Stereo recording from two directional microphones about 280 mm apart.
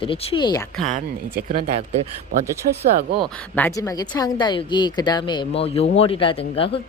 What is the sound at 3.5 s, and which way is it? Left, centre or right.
Speech, centre.